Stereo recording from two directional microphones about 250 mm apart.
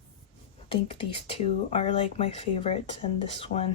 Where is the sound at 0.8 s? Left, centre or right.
Left.